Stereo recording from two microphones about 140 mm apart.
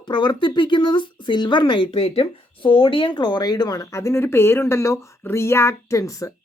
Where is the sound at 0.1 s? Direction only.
35° left (ahead or behind).